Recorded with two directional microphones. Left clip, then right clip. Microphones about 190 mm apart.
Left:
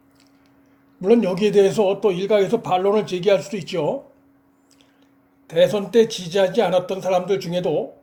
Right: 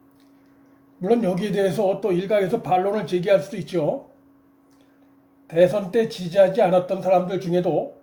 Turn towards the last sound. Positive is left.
turn(degrees=25)  # may be behind; listen again after turning